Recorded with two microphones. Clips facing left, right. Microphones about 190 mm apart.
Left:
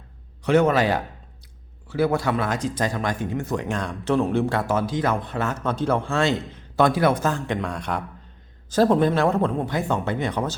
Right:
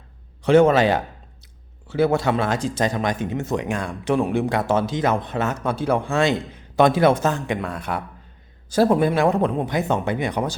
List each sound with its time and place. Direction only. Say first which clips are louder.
0.4 s speech: right 4 dB; 30° right (ahead or behind)
3.7 s speech: right 1 dB; 10° right (ahead or behind)
4.6 s speech: right 2 dB; 25° right (ahead or behind)